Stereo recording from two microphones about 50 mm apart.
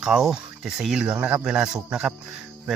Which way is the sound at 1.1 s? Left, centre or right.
Right.